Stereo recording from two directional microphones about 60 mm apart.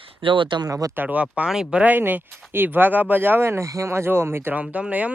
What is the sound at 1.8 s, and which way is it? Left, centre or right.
Speech, right.